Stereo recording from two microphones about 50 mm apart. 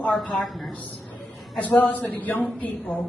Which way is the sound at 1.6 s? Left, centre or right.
Left.